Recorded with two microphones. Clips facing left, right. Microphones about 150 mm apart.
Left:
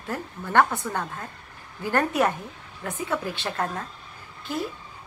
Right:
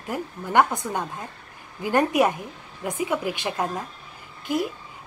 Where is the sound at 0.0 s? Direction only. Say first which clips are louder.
Right 2 dB; 15° right (ahead or behind).